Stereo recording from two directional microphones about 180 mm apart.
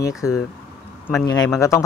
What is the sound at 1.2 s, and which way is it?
Speech, 20° left (ahead or behind).